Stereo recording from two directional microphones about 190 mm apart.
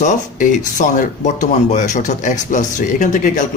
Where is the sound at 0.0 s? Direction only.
40° left (ahead or behind).